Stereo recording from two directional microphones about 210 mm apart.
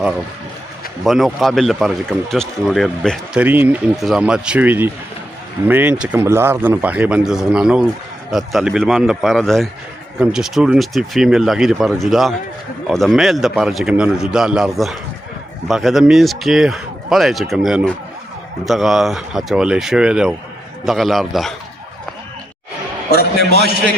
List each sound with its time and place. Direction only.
1.0 s speech: centre (ahead or behind)
23.0 s a man's voice: 50° left (ahead or behind)